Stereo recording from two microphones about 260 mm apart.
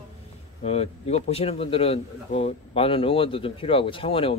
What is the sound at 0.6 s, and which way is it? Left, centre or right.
Speech, left.